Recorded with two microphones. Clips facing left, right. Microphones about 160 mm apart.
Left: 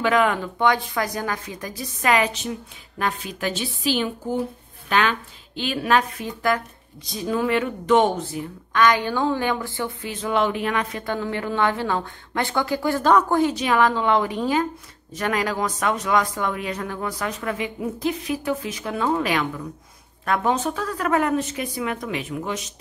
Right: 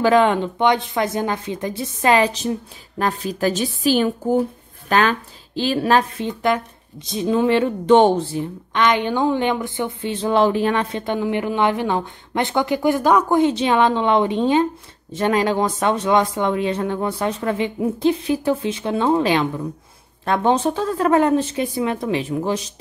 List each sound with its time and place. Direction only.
0.0 s speech: 30° right (ahead or behind)